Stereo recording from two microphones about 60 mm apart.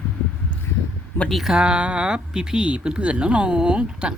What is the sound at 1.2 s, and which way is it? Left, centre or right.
Speech, centre.